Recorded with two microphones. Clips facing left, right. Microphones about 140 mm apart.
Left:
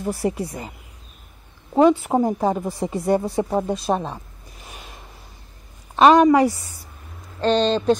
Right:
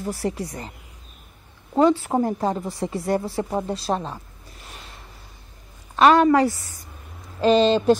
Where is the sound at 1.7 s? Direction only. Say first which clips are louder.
Left 2 dB; 15° left (ahead or behind).